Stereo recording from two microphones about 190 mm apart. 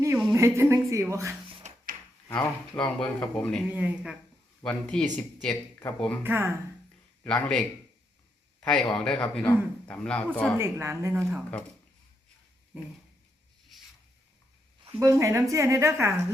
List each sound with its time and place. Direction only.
0.3 s a sound: 15° right (ahead or behind)
1.6 s drawer open or close: 40° right (ahead or behind)
2.3 s a man's voice: 5° left (ahead or behind)
3.7 s a woman's voice: 10° right (ahead or behind)
6.2 s a woman's voice: 10° right (ahead or behind)
7.3 s a man's voice: 5° left (ahead or behind)
10.6 s a woman's voice: 15° right (ahead or behind)
15.0 s a woman's voice: 15° right (ahead or behind)